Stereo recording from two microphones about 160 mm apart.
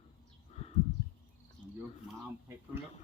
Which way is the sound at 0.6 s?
40° left (ahead or behind).